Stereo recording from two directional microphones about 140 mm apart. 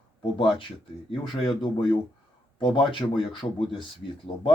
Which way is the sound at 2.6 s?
35° left (ahead or behind).